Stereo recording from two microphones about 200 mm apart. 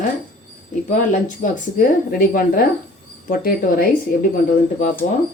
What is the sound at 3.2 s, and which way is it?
Speech, 45° left (ahead or behind).